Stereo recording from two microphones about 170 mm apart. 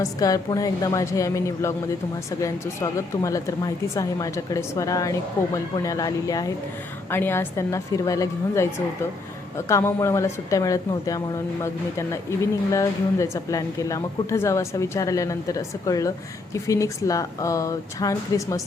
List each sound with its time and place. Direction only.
0.0 s a woman's voice: 20° left (ahead or behind)